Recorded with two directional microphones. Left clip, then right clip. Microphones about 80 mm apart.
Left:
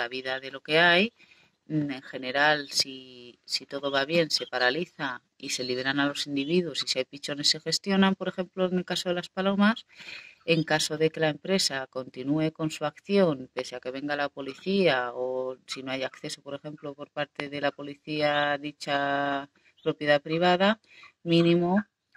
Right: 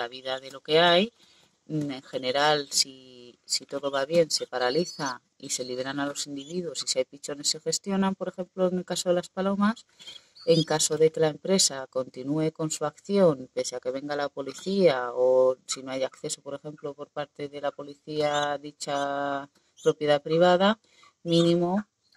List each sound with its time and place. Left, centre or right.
0.0 s speech: right
2.9 s speech: left
3.4 s speech: right
15.0 s speech: right